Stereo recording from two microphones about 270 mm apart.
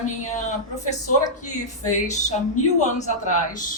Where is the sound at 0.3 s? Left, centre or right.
Left.